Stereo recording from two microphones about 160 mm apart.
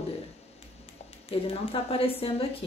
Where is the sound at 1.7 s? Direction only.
35° left (ahead or behind).